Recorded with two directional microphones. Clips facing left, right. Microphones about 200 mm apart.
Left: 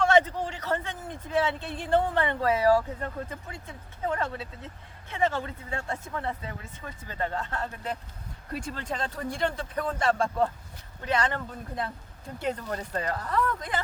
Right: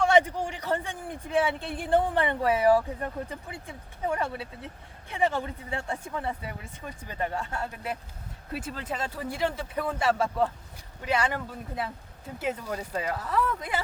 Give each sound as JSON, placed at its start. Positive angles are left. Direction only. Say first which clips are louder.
{"t": 0.0, "sound": "a man's voice", "louder": "even", "side_deg": -15}